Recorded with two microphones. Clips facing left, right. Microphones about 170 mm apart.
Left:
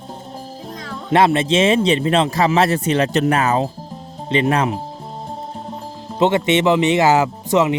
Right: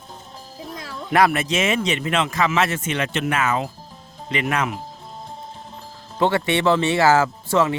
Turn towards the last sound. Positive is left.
turn(degrees=20)  # may be behind; listen again after turning